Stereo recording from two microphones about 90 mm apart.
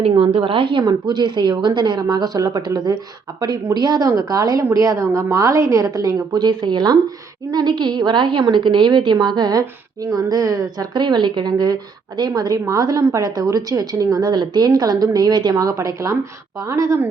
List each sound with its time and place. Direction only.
0.0 s a woman's voice: 85° right; by 0.9 s 70° right (ahead or behind)
0.9 s a woman's voice: 55° right (ahead or behind); by 17.1 s 35° right (ahead or behind)